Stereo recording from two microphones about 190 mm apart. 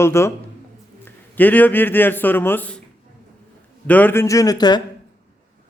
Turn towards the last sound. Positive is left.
turn(degrees=20)  # may be behind; listen again after turning